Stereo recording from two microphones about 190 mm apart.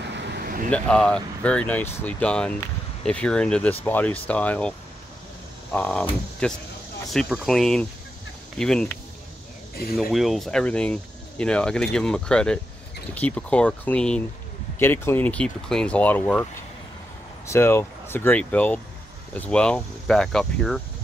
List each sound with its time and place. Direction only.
0.1 s vehicle: 65° right (ahead or behind)
0.7 s speech: 5° left (ahead or behind)
9.8 s speech: 55° left (ahead or behind)
10.1 s speech: centre (ahead or behind)
17.5 s speech: 10° left (ahead or behind)